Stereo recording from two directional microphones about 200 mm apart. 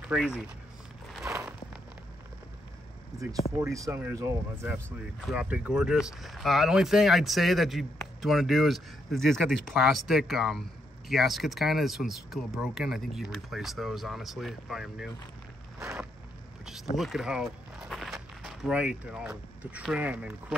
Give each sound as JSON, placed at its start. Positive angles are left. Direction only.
{"t": 0.0, "sound": "speech", "side_deg": -5}
{"t": 1.3, "sound": "a sound", "side_deg": -5}
{"t": 3.1, "sound": "speech", "side_deg": -15}
{"t": 4.7, "sound": "speech", "side_deg": 5}
{"t": 5.3, "sound": "speech", "side_deg": -5}
{"t": 15.8, "sound": "a sound", "side_deg": -15}
{"t": 16.9, "sound": "speech", "side_deg": 0}